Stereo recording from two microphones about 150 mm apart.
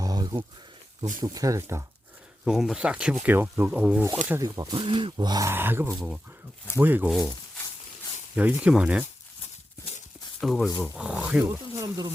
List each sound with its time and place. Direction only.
0.0 s a sound: 25° right (ahead or behind)
1.2 s speech: 25° right (ahead or behind)
2.4 s speech: centre (ahead or behind)
4.3 s speech: 25° right (ahead or behind)
5.5 s speech: 15° right (ahead or behind)
8.4 s speech: 10° right (ahead or behind)
10.4 s speech: centre (ahead or behind)
11.4 s speech: 25° right (ahead or behind)